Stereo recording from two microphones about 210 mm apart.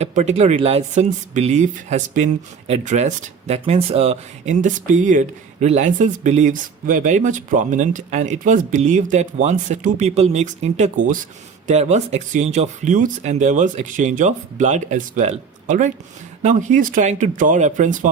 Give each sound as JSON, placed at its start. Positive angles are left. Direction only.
{"t": 0.0, "sound": "speech", "side_deg": -35}